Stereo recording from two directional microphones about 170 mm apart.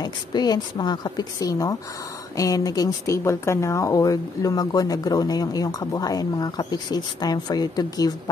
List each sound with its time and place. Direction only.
0.0 s speech: 25° left (ahead or behind)